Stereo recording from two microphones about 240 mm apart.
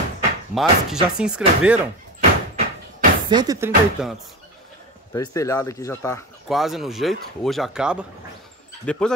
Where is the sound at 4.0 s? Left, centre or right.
Centre.